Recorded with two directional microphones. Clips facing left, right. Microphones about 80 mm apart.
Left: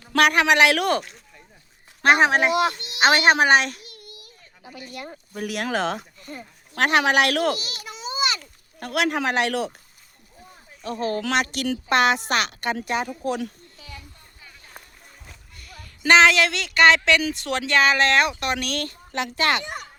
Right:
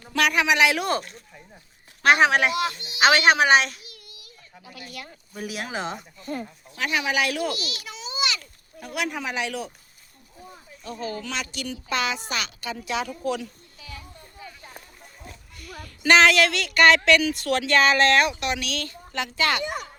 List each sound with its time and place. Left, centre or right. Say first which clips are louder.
0.1 s speech: left 4 dB; left
2.0 s speech: left 1 dB; left
2.5 s speech: left 5 dB; left
3.0 s a child's voice: left 1 dB; left
6.7 s speech: left 6 dB; left
7.5 s a sound: left 1 dB; left
8.8 s speech: left 6 dB; left
11.0 s a woman's voice: left 8 dB; left
13.1 s speech: left 1 dB; left
16.0 s speech: left 1 dB; left
18.3 s speech: left 2 dB; left
19.6 s a sound: right 4 dB; right